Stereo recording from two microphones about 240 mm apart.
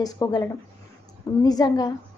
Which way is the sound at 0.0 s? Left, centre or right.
Centre.